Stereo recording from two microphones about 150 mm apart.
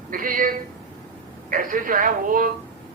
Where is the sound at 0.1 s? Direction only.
65° right (ahead or behind).